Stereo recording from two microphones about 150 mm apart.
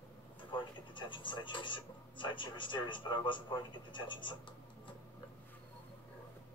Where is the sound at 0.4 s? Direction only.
30° left (ahead or behind).